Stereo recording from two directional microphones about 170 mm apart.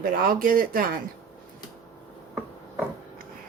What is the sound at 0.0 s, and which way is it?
Speech, 55° right (ahead or behind).